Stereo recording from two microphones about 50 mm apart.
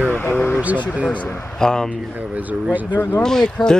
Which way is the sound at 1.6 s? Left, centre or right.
Centre.